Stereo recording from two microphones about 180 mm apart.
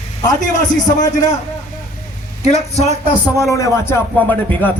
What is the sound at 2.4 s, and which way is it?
Speech, 35° left (ahead or behind).